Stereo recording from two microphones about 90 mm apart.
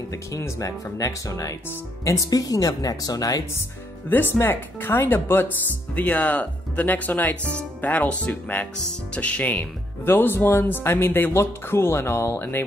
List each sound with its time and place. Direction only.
0.1 s speech: 35° left (ahead or behind)
4.1 s speech: 20° left (ahead or behind)